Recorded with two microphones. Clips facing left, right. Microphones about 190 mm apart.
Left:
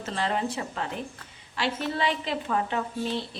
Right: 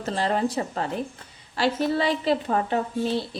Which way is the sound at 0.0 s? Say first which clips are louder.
Right 4 dB; 40° right (ahead or behind).